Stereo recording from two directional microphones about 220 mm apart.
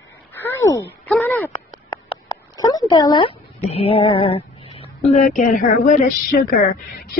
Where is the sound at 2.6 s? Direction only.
15° left (ahead or behind).